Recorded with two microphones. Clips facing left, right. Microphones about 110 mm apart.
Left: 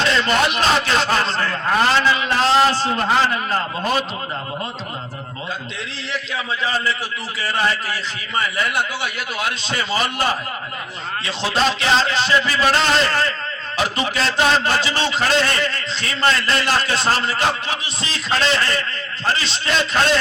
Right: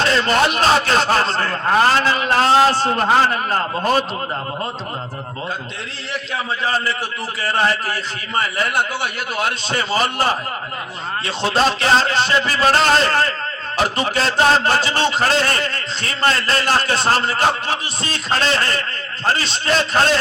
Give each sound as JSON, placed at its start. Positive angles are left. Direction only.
{"t": 0.0, "sound": "a man's voice", "side_deg": -35}
{"t": 3.0, "sound": "a man's voice", "side_deg": -30}
{"t": 6.3, "sound": "a man's voice", "side_deg": -45}
{"t": 8.4, "sound": "a man's voice", "side_deg": -40}